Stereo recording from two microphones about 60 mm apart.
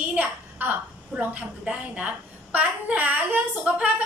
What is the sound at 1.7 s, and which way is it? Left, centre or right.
A woman's voice, right.